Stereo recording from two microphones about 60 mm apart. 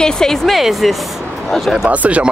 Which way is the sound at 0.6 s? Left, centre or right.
Centre.